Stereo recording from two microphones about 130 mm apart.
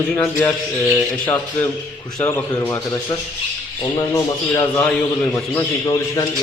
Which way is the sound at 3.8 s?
25° left (ahead or behind).